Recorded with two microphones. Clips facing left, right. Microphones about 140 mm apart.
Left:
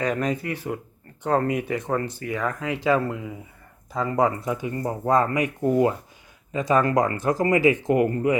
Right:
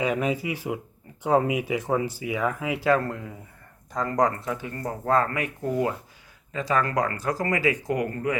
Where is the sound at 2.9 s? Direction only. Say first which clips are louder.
Left 1 dB; 5° left (ahead or behind).